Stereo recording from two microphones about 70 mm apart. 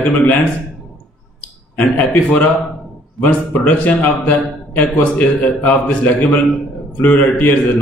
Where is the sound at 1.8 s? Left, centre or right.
Left.